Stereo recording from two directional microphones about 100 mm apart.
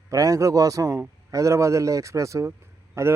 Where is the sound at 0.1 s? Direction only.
35° right (ahead or behind).